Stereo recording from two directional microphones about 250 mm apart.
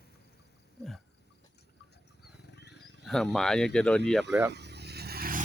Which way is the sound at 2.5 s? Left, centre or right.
Left.